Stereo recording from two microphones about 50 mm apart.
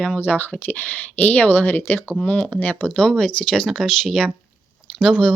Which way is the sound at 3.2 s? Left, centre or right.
Centre.